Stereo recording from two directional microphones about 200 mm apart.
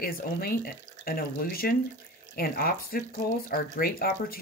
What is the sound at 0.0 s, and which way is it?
Speech, 50° left (ahead or behind).